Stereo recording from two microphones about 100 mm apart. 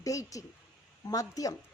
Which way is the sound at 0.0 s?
35° left (ahead or behind).